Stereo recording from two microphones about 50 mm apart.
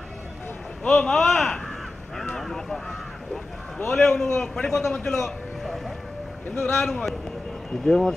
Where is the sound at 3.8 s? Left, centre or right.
Centre.